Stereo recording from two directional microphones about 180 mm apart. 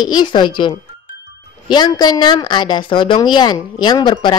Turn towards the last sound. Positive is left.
turn(degrees=25)  # may be behind; listen again after turning